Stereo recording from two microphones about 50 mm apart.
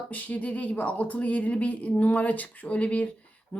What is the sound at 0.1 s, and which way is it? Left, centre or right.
A woman's voice, left.